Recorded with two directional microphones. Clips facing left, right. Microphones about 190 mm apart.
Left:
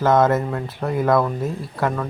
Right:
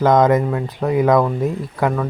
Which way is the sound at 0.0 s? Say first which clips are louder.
Right 3 dB; 15° right (ahead or behind).